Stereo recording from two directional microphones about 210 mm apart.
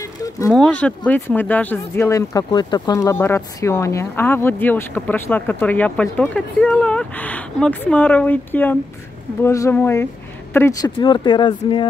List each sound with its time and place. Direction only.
0.5 s speech: 5° left (ahead or behind); by 11.8 s 20° left (ahead or behind)